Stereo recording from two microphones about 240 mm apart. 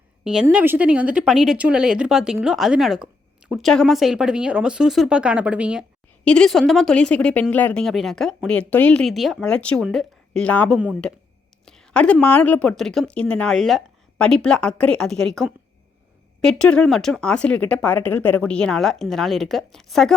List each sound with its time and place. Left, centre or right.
0.3 s speech: centre